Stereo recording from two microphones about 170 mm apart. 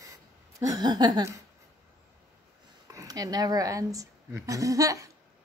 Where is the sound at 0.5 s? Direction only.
20° right (ahead or behind).